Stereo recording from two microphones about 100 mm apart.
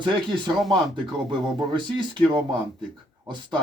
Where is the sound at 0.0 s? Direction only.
55° right (ahead or behind).